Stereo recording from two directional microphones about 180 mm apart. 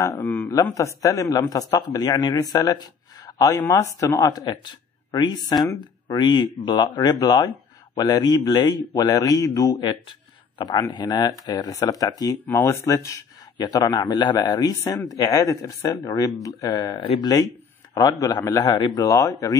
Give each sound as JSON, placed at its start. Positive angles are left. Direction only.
{"t": 0.0, "sound": "speech", "side_deg": 15}
{"t": 17.0, "sound": "speech", "side_deg": 35}
{"t": 18.2, "sound": "speech", "side_deg": 20}